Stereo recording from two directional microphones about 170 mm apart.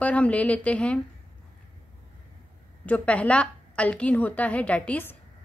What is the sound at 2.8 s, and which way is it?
A woman's voice, 10° left (ahead or behind).